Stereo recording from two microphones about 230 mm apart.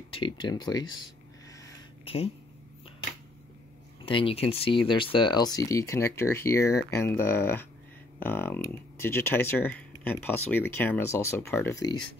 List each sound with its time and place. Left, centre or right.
0.1 s speech: left
1.6 s a sound: left
4.0 s speech: left